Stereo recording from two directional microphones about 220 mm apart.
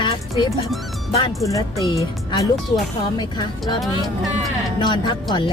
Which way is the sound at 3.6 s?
Centre (ahead or behind).